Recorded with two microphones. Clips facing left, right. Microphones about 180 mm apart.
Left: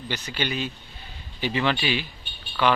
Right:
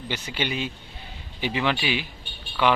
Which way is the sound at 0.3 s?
20° right (ahead or behind).